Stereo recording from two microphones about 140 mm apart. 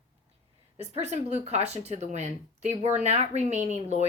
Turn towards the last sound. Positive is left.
turn(degrees=-55)  # may be behind; listen again after turning